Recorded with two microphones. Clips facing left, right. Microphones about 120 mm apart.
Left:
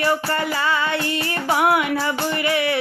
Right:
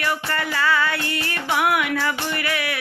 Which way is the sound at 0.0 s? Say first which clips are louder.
Left 4 dB; 30° left (ahead or behind).